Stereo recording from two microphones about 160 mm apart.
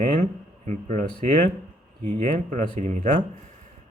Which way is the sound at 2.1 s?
50° right (ahead or behind).